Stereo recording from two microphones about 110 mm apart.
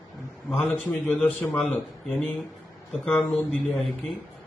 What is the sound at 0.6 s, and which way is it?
A man's voice, 20° left (ahead or behind).